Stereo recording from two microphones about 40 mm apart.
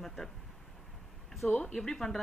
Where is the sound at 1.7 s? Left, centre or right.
Centre.